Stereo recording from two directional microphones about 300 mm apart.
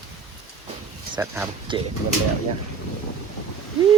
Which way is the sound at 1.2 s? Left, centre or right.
Centre.